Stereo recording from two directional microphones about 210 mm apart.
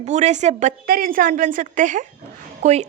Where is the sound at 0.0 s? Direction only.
35° right (ahead or behind).